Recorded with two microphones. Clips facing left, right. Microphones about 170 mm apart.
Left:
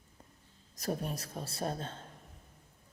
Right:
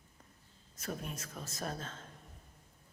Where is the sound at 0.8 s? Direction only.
35° left (ahead or behind).